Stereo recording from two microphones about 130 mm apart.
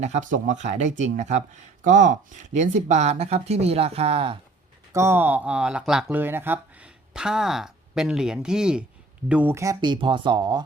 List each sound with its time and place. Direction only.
0.0 s speech: 70° right (ahead or behind)
1.8 s speech: 80° right; by 4.4 s 45° right (ahead or behind)
4.9 s speech: 20° right (ahead or behind)
9.6 s speech: 30° right (ahead or behind)